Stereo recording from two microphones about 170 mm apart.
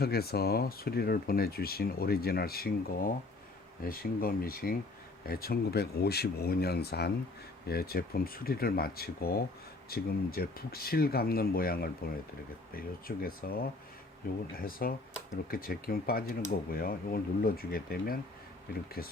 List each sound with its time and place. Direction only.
0.0 s speech: 65° left (ahead or behind)